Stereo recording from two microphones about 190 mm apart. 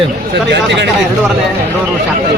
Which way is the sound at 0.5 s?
65° right (ahead or behind).